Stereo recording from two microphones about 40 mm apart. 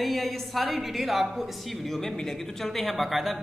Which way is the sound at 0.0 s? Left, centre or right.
Centre.